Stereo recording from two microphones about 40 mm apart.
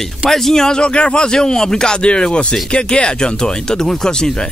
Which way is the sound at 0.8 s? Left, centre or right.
Left.